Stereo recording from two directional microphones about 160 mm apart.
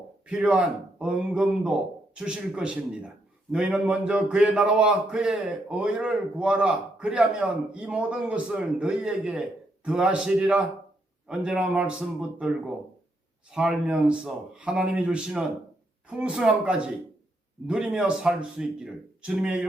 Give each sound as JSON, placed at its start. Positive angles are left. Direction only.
{"t": 0.3, "sound": "a man's voice", "side_deg": -5}